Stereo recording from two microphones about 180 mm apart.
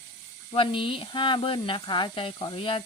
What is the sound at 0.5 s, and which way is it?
Speech, 30° left (ahead or behind).